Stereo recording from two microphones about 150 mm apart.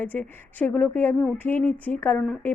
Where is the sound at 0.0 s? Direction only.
10° left (ahead or behind).